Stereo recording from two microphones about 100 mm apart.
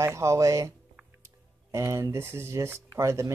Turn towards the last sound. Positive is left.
turn(degrees=-30)  # may be behind; listen again after turning